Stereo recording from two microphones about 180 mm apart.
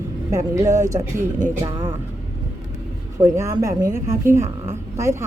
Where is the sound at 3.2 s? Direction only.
15° right (ahead or behind).